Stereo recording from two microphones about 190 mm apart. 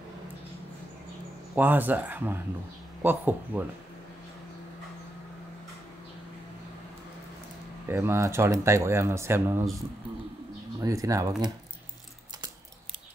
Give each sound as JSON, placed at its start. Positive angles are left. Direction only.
{"t": 1.6, "sound": "speech", "side_deg": -10}
{"t": 7.9, "sound": "speech", "side_deg": -15}
{"t": 10.8, "sound": "speech", "side_deg": -15}